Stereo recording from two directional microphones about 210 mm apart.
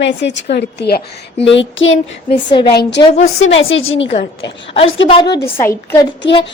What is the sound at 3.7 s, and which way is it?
Speech, 70° left (ahead or behind).